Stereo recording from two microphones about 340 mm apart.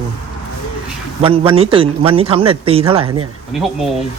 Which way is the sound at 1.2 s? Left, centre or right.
Centre.